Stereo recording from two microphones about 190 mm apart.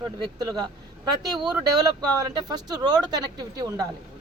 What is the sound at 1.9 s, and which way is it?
Speech, 20° right (ahead or behind).